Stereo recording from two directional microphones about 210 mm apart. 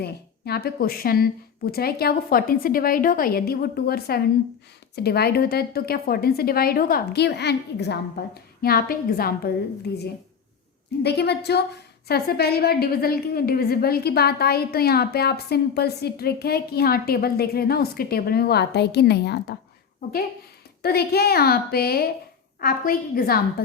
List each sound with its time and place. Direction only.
0.0 s a woman's voice: 50° left (ahead or behind)
11.0 s a woman's voice: 50° left (ahead or behind)
20.8 s a woman's voice: 50° left (ahead or behind)